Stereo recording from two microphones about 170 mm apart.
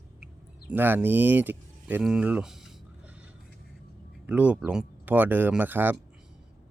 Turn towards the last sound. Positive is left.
turn(degrees=-10)  # may be behind; listen again after turning